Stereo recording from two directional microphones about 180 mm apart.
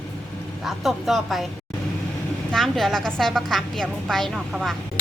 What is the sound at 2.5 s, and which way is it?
A woman's voice, centre (ahead or behind).